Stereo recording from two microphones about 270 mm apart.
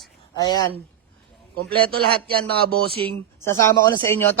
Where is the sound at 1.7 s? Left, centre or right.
Right.